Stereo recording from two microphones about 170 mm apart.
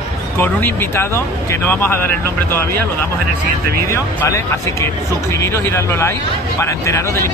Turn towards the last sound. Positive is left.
turn(degrees=15)  # may be behind; listen again after turning